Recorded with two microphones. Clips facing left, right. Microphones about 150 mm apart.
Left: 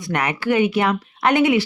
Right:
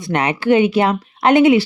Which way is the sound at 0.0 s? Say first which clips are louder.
Right 4 dB; 25° right (ahead or behind).